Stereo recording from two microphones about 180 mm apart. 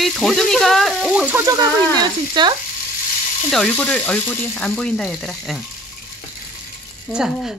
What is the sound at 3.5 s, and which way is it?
Speech, 5° left (ahead or behind).